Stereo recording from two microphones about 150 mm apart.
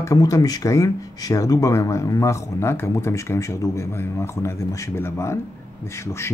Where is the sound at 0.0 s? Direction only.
25° left (ahead or behind).